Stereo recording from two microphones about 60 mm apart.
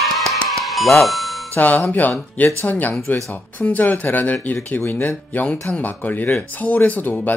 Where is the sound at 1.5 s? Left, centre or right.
Left.